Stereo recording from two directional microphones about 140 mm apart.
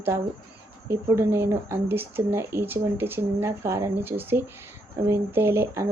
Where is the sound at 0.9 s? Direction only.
20° right (ahead or behind).